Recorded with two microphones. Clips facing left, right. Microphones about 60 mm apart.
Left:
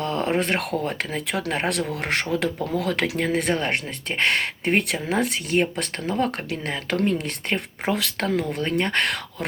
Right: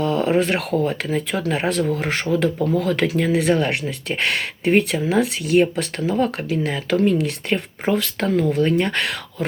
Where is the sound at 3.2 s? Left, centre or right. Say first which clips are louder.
Right 6 dB; left.